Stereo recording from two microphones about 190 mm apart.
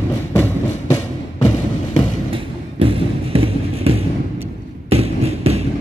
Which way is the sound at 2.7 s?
30° right (ahead or behind).